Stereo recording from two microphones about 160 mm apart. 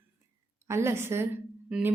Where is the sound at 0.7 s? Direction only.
15° right (ahead or behind).